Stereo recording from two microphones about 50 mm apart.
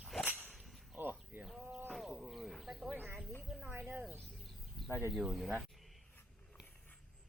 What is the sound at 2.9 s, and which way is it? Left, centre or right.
Snake, right.